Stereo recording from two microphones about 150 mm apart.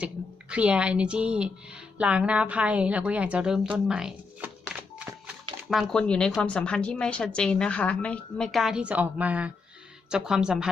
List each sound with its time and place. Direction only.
0.5 s a woman's voice: 5° right (ahead or behind)
5.7 s a woman's voice: 5° left (ahead or behind)